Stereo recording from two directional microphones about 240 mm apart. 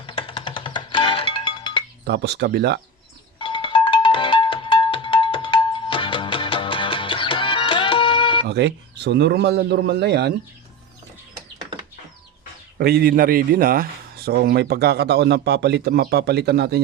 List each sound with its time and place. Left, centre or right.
0.0 s music: left
2.0 s a man's voice: right
3.3 s music: left
8.4 s a man's voice: right
12.8 s speech: right